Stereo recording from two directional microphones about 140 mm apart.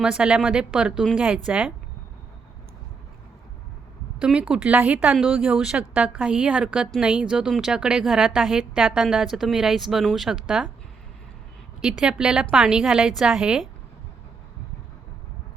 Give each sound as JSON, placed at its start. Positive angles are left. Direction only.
{"t": 0.0, "sound": "speech", "side_deg": -5}
{"t": 4.2, "sound": "speech", "side_deg": -10}
{"t": 11.8, "sound": "speech", "side_deg": -5}